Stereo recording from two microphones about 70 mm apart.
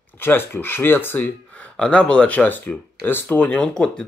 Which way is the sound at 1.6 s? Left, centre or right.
Centre.